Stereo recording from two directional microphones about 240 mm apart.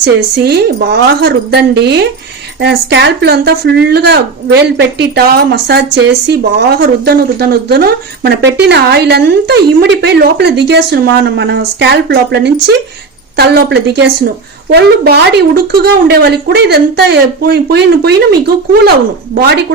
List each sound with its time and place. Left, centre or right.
0.0 s a woman's voice: right